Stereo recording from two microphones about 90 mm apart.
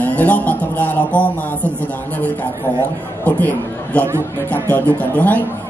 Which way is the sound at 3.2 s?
20° left (ahead or behind).